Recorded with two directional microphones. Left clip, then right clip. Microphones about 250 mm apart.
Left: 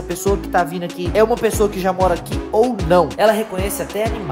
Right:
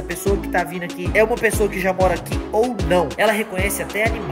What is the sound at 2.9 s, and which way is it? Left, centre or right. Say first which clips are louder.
Speech: left 3 dB; centre.